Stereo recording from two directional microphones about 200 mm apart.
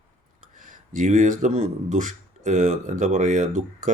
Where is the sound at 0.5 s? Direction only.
40° right (ahead or behind).